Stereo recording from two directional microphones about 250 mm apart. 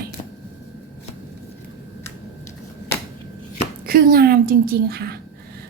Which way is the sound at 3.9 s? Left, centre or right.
Right.